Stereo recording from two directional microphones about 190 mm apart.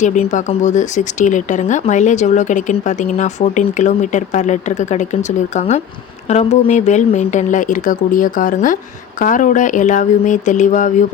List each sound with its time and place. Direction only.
0.0 s speech: 40° left (ahead or behind)